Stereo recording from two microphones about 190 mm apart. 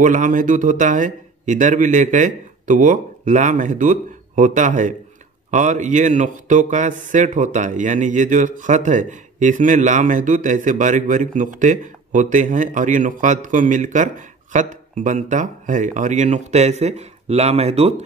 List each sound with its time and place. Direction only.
0.0 s speech: 45° right (ahead or behind)